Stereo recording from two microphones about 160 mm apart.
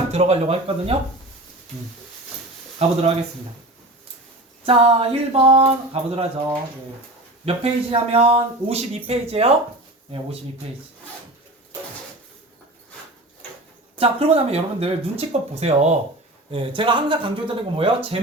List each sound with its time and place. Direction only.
0.1 s speech: 40° right (ahead or behind)
2.7 s speech: 40° right (ahead or behind)
4.6 s speech: 35° right (ahead or behind)
7.4 s speech: 40° right (ahead or behind)
14.0 s speech: 40° right (ahead or behind)